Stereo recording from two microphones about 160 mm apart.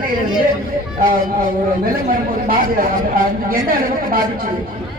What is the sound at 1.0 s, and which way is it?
Speech, 60° right (ahead or behind).